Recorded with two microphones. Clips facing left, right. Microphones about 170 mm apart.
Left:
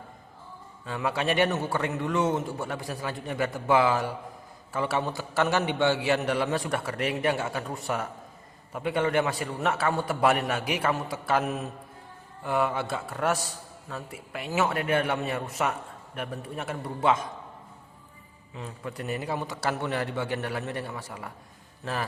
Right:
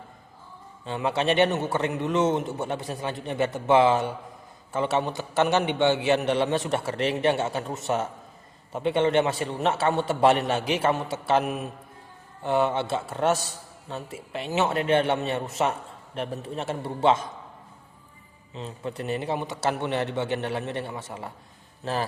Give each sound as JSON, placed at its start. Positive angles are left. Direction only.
{"t": 0.9, "sound": "a man's voice", "side_deg": -25}
{"t": 18.5, "sound": "a man's voice", "side_deg": -25}